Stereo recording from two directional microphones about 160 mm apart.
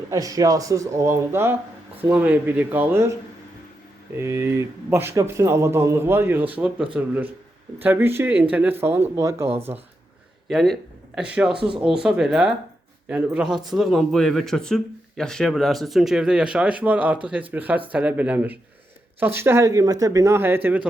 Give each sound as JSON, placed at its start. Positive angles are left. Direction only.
{"t": 0.1, "sound": "a man's voice", "side_deg": -20}
{"t": 4.2, "sound": "a man's voice", "side_deg": -15}
{"t": 10.5, "sound": "a man's voice", "side_deg": 0}